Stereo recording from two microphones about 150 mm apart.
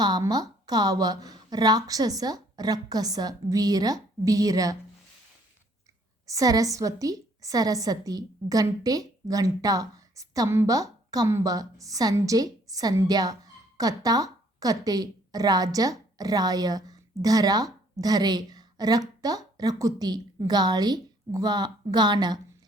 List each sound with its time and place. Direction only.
0.0 s a woman's voice: 25° right (ahead or behind)
6.2 s a woman's voice: 25° right (ahead or behind)